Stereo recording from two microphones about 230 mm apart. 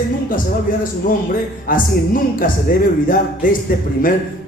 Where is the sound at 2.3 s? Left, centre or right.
Left.